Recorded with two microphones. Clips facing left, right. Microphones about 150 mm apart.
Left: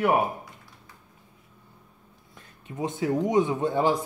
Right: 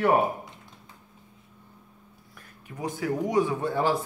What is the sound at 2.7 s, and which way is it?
Speech, 25° left (ahead or behind).